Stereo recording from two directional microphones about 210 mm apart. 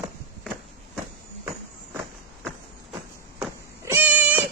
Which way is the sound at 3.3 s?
10° right (ahead or behind).